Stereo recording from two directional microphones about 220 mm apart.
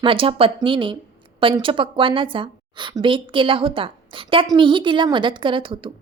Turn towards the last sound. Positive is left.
turn(degrees=-25)  # may be behind; listen again after turning